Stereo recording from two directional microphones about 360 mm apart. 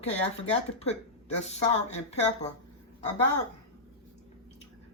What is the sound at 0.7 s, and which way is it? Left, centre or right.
Speech, centre.